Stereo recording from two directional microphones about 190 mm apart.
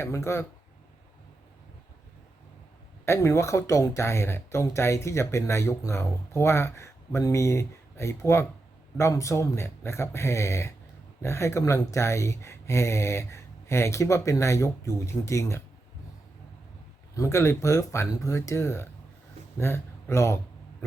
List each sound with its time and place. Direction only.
0.0 s speech: 15° left (ahead or behind)
3.1 s speech: 15° left (ahead or behind)
17.2 s speech: 15° left (ahead or behind)